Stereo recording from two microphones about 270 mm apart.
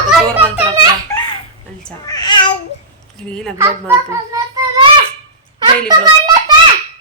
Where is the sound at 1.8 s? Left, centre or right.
Centre.